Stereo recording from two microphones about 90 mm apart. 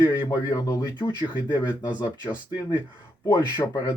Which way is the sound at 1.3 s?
55° left (ahead or behind).